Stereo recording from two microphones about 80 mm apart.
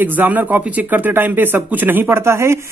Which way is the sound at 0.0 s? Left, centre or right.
Right.